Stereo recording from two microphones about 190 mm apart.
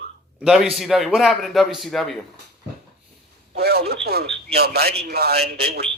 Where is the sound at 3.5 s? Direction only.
55° right (ahead or behind).